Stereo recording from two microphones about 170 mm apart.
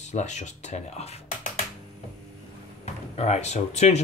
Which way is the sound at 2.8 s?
40° left (ahead or behind).